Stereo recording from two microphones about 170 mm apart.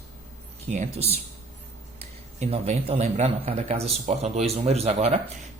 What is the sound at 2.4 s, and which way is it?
Speech, 40° right (ahead or behind).